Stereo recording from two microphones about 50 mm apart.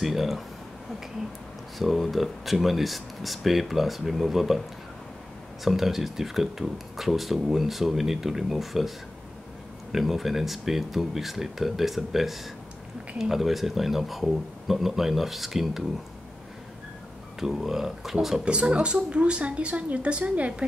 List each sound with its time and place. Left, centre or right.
0.0 s speech: centre
1.8 s speech: centre
9.9 s speech: centre
17.4 s speech: centre
18.4 s a woman's voice: right